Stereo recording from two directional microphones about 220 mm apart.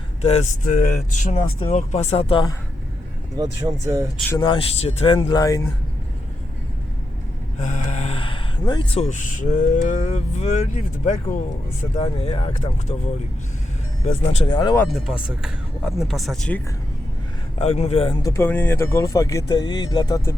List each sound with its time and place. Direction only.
0.2 s speech: 30° left (ahead or behind)
3.3 s speech: 15° right (ahead or behind)
4.4 s speech: 20° left (ahead or behind)
7.6 s speech: 35° left (ahead or behind)
9.0 s speech: 35° left (ahead or behind)
14.0 s speech: 30° left (ahead or behind)
14.9 s speech: 5° right (ahead or behind)
17.6 s speech: 30° left (ahead or behind)